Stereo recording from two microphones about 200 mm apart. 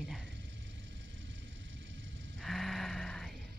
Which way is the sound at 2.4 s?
Centre (ahead or behind).